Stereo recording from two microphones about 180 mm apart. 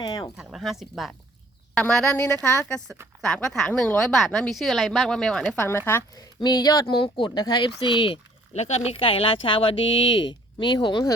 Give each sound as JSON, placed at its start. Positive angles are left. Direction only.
{"t": 0.0, "sound": "speech", "side_deg": 20}
{"t": 0.3, "sound": "a woman's voice", "side_deg": 0}